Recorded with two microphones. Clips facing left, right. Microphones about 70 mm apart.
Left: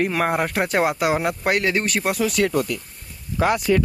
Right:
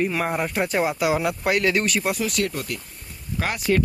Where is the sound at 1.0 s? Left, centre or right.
Left.